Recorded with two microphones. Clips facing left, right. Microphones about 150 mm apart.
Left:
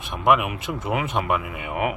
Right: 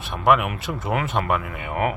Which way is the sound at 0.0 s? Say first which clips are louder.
Right 1 dB; 15° left (ahead or behind).